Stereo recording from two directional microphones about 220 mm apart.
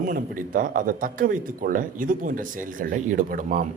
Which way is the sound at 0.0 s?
40° right (ahead or behind).